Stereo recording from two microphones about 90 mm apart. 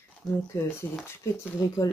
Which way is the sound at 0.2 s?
40° left (ahead or behind).